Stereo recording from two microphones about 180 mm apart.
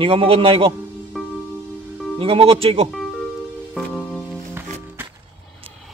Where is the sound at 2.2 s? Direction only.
30° right (ahead or behind).